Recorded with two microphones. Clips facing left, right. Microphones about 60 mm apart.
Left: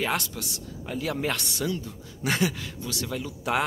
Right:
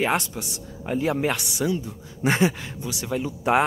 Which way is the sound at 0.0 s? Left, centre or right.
Right.